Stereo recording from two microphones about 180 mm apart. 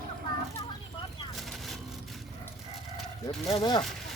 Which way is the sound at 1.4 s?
Centre (ahead or behind).